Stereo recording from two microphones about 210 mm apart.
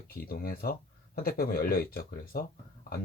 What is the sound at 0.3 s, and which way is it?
Speech, 45° left (ahead or behind).